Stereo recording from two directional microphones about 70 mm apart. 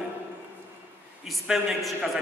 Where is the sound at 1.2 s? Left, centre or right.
Centre.